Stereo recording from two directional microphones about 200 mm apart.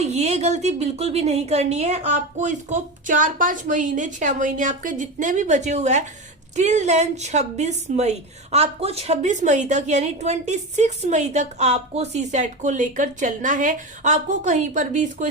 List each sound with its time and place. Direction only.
0.0 s a woman's voice: 35° right (ahead or behind)